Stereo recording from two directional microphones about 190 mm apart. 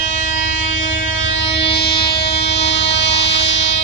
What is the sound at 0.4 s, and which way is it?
Music, 80° left.